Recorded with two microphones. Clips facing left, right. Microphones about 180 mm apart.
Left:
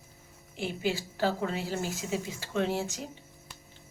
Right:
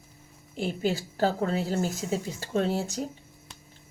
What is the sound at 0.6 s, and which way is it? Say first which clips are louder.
A woman's voice: right 3 dB; 45° right (ahead or behind).